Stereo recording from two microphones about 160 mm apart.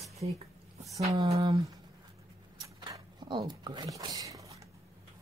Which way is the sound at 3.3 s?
30° right (ahead or behind).